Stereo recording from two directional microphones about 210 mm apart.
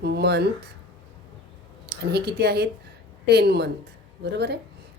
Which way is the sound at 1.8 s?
50° right (ahead or behind).